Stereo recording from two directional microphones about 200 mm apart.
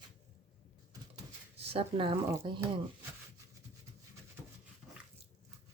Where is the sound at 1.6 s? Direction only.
30° right (ahead or behind).